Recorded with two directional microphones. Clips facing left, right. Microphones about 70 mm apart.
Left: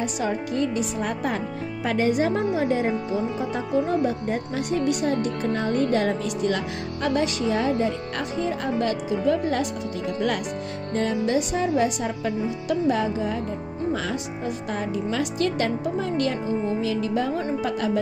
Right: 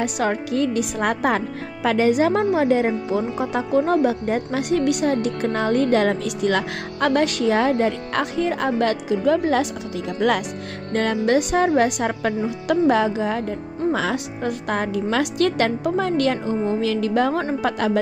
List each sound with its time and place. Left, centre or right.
0.0 s speech: right
10.9 s speech: right
14.1 s a woman's voice: right
16.8 s a woman's voice: right